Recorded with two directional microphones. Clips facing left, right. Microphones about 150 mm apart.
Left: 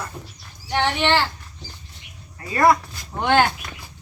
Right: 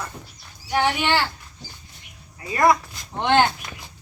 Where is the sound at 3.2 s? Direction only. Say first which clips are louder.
Even; 25° right (ahead or behind).